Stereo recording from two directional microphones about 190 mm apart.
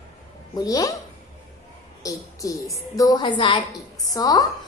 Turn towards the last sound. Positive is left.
turn(degrees=20)  # may be behind; listen again after turning